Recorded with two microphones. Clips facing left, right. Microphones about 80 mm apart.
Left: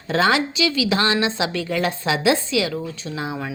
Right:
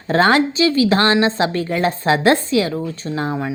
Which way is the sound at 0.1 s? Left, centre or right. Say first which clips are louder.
Right 4 dB; right.